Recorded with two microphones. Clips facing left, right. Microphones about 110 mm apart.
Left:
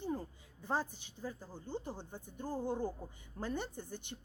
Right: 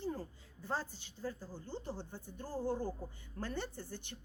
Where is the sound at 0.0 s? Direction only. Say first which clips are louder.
Left 1 dB; 20° left (ahead or behind).